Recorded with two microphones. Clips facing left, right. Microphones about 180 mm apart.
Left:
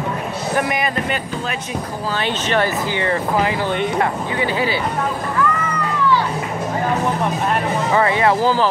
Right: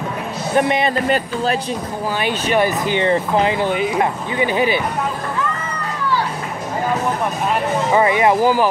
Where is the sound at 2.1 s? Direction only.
10° right (ahead or behind).